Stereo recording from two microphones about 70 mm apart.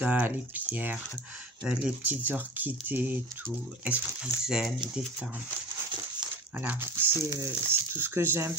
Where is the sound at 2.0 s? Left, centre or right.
Right.